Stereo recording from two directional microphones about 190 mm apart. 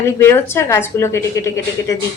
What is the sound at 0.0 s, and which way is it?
A woman's voice, 15° left (ahead or behind).